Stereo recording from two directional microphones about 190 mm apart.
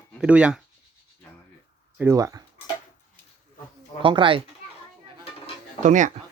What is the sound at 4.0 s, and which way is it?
Speech, 25° right (ahead or behind).